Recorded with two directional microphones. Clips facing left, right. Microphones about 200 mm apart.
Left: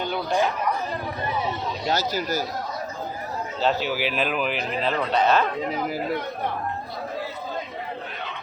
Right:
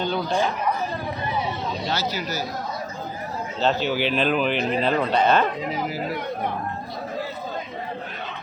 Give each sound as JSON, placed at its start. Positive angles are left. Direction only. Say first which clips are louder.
{"t": 1.9, "sound": "speech", "louder": "left 5 dB", "side_deg": 45}
{"t": 3.6, "sound": "speech", "louder": "right 2 dB", "side_deg": 5}